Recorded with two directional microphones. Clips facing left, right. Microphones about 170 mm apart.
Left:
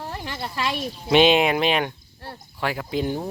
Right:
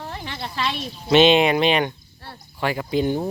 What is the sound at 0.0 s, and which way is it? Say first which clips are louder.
Speech: left 1 dB; 5° left (ahead or behind).